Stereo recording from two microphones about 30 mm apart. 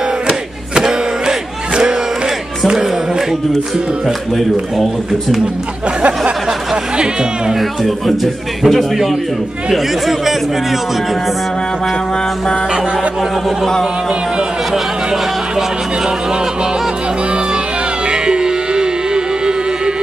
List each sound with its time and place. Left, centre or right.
0.3 s battle cry: right
7.8 s a man's voice: centre
18.1 s music: right